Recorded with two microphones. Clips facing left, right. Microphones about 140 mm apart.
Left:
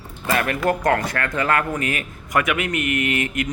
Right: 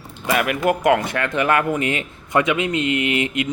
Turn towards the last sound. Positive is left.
turn(degrees=-20)  # may be behind; listen again after turning